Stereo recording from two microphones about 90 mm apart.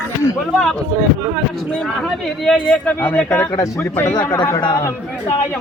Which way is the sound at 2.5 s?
15° left (ahead or behind).